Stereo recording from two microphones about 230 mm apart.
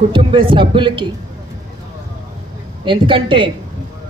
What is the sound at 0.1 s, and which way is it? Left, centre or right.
A man's voice, right.